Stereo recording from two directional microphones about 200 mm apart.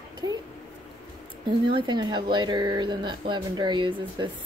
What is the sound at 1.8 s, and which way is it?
Speech, 20° right (ahead or behind).